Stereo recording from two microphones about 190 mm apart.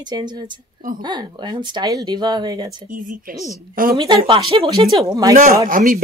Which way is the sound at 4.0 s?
25° right (ahead or behind).